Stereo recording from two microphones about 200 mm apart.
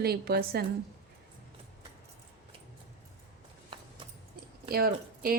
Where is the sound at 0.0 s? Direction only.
50° right (ahead or behind).